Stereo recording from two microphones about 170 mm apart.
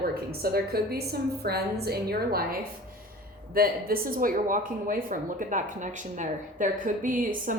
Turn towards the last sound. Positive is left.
turn(degrees=-50)  # may be behind; listen again after turning